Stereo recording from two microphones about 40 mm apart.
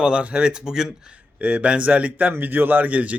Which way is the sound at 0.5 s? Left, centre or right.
Centre.